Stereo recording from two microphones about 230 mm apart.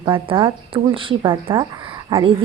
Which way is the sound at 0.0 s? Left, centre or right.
Right.